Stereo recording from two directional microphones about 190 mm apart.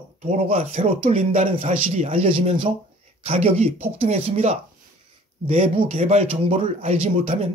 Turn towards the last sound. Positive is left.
turn(degrees=-35)  # may be behind; listen again after turning